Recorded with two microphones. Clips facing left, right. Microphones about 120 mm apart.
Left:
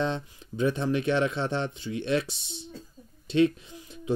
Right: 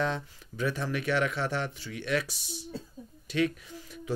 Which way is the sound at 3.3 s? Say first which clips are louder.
Left 6 dB; 25° left (ahead or behind).